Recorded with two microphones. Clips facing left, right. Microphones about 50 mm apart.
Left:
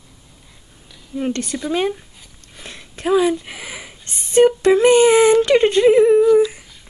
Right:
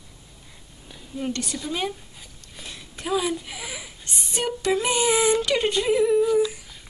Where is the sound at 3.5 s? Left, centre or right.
Left.